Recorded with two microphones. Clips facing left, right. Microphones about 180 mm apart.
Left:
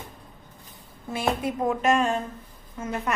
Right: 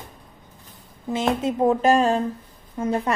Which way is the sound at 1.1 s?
20° right (ahead or behind).